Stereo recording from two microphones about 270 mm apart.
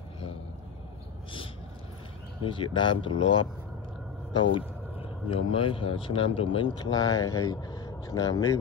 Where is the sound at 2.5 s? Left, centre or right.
Centre.